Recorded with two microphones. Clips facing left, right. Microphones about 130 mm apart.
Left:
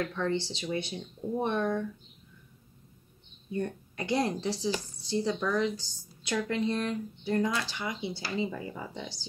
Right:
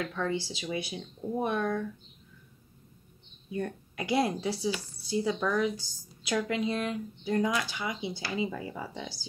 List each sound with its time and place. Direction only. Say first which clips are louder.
0.0 s a woman's voice: left 1 dB; 10° right (ahead or behind)
3.4 s a woman's voice: left 1 dB; 10° right (ahead or behind)